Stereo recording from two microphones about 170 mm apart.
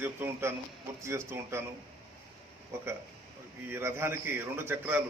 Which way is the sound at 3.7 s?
15° right (ahead or behind).